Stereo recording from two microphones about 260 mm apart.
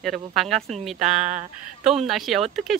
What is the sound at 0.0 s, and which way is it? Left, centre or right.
Speech, centre.